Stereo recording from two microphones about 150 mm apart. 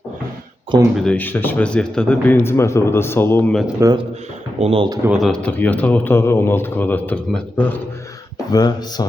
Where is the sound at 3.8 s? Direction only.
25° right (ahead or behind).